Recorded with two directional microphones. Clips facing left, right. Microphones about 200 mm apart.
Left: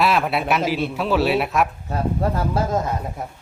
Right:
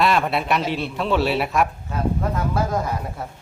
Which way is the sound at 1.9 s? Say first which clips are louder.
Left 1 dB; 30° left (ahead or behind).